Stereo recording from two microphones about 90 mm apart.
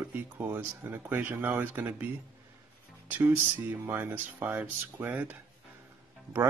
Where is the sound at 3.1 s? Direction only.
20° right (ahead or behind).